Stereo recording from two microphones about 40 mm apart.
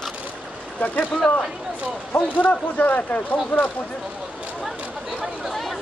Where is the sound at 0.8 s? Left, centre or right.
Left.